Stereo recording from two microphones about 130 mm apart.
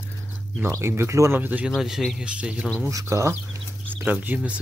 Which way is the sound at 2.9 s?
25° right (ahead or behind).